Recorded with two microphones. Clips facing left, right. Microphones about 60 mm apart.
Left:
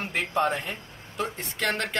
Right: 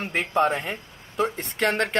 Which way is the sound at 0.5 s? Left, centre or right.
Right.